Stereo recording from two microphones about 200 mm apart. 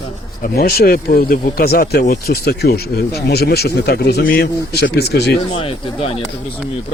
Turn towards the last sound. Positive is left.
turn(degrees=30)  # may be behind; listen again after turning